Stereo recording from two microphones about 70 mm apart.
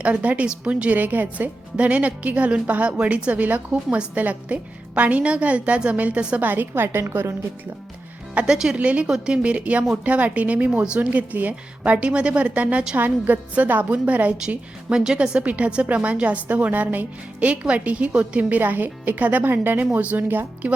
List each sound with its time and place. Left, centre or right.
0.0 s a woman's voice: centre
8.4 s a woman's voice: centre
13.0 s a woman's voice: right